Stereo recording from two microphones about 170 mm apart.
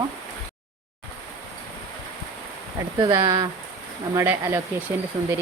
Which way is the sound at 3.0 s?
20° right (ahead or behind).